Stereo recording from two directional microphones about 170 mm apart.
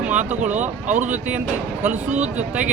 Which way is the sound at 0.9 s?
45° right (ahead or behind).